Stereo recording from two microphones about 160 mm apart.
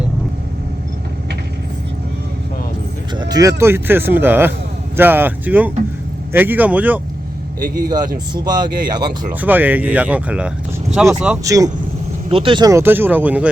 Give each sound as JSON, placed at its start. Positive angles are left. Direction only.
{"t": 3.2, "sound": "speech", "side_deg": -25}
{"t": 8.3, "sound": "speech", "side_deg": -25}
{"t": 9.4, "sound": "speech", "side_deg": -10}
{"t": 11.4, "sound": "speech", "side_deg": -20}
{"t": 12.3, "sound": "speech", "side_deg": -35}